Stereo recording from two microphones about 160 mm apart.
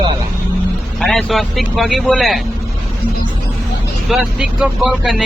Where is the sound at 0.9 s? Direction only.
Centre (ahead or behind).